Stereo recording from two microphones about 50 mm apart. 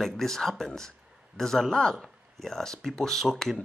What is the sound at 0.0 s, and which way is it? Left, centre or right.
Speech, centre.